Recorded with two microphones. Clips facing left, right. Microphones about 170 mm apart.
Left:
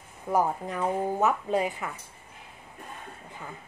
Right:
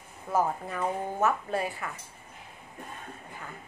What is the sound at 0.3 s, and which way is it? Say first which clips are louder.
Speech: left 2 dB; 15° left (ahead or behind).